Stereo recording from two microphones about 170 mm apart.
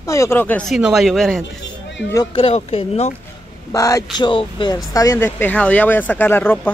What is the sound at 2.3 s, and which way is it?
Speech, 35° left (ahead or behind).